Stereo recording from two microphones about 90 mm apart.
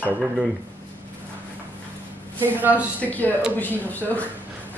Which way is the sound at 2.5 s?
20° right (ahead or behind).